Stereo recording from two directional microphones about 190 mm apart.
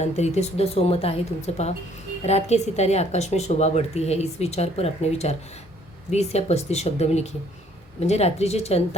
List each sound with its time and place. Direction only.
0.0 s speech: 35° left (ahead or behind)